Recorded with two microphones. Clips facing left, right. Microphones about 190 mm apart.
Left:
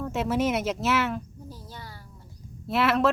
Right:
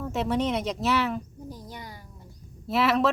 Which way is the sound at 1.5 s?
15° right (ahead or behind).